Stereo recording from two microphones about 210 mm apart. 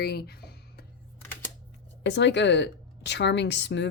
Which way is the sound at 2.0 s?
55° left (ahead or behind).